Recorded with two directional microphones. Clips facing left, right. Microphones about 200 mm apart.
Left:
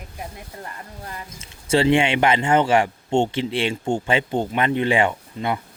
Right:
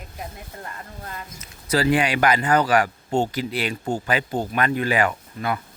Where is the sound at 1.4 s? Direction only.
25° left (ahead or behind).